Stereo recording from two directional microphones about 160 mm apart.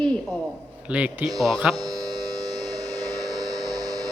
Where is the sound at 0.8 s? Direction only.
10° right (ahead or behind).